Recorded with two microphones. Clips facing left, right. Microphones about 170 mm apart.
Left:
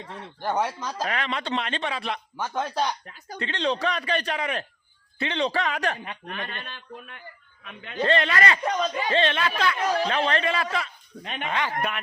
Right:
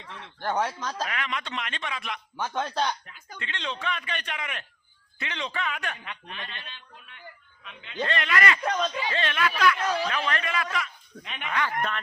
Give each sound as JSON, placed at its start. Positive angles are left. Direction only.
{"t": 0.0, "sound": "speech", "side_deg": 40}
{"t": 0.4, "sound": "speech", "side_deg": 10}
{"t": 1.0, "sound": "speech", "side_deg": 35}
{"t": 2.4, "sound": "speech", "side_deg": 10}
{"t": 3.1, "sound": "speech", "side_deg": 35}
{"t": 6.2, "sound": "speech", "side_deg": 50}
{"t": 8.0, "sound": "speech", "side_deg": 30}
{"t": 8.6, "sound": "speech", "side_deg": 5}
{"t": 8.9, "sound": "speech", "side_deg": 50}
{"t": 9.1, "sound": "speech", "side_deg": 30}
{"t": 11.2, "sound": "speech", "side_deg": 40}
{"t": 11.8, "sound": "speech", "side_deg": 10}